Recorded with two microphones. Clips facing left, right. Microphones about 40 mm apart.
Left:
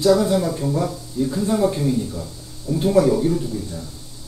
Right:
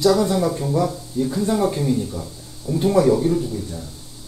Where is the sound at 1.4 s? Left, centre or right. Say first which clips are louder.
Left 1 dB; centre.